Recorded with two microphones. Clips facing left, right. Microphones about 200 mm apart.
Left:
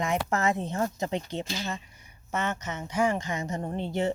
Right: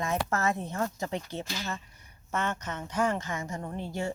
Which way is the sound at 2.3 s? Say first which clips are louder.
Left 1 dB; 10° left (ahead or behind).